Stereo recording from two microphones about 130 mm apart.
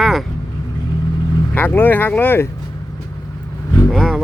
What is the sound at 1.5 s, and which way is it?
Speech, 15° left (ahead or behind).